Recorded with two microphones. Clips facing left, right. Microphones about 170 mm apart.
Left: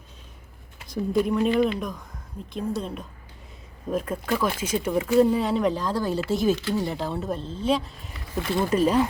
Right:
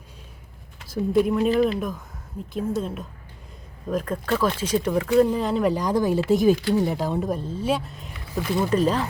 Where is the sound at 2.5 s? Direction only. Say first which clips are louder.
Right 3 dB; 5° right (ahead or behind).